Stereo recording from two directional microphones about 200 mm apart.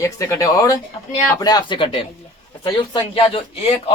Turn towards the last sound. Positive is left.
turn(degrees=30)  # may be behind; listen again after turning